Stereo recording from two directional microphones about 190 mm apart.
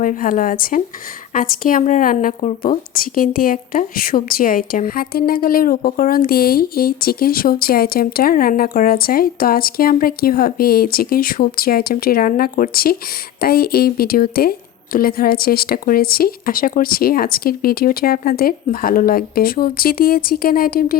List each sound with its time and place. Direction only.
0.0 s a woman's voice: 45° left (ahead or behind)